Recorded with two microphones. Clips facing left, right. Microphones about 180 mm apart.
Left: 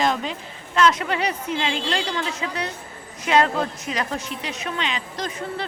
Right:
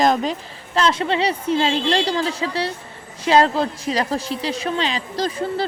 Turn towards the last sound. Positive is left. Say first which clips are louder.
# right 6 dB
turn(degrees=-30)  # may be behind; listen again after turning